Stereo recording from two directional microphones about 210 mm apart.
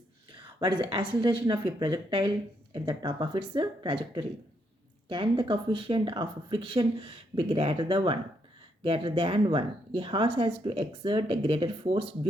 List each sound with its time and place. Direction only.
0.6 s speech: 25° right (ahead or behind)